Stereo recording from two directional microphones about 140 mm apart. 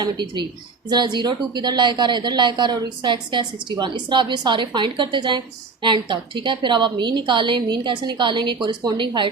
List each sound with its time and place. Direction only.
0.0 s a woman's voice: 35° right (ahead or behind)